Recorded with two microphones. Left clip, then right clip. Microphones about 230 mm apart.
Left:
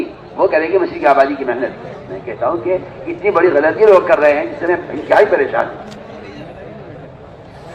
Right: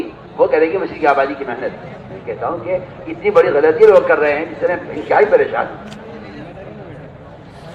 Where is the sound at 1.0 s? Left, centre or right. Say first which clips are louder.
Left 2 dB; left.